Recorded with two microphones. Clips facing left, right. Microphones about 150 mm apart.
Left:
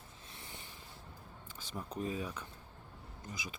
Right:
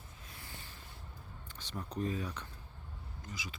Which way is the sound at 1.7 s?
5° left (ahead or behind).